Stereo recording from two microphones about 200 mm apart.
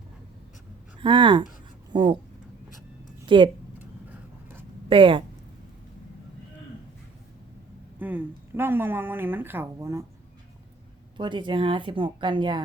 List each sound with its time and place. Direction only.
0.9 s speech: 25° right (ahead or behind)
3.2 s speech: 25° right (ahead or behind)
4.1 s vehicle: 10° right (ahead or behind)
4.9 s speech: 25° right (ahead or behind)
7.9 s speech: 10° right (ahead or behind)
11.2 s speech: 25° right (ahead or behind)